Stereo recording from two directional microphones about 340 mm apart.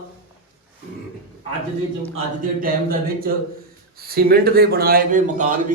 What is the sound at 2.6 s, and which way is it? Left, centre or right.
Speech, right.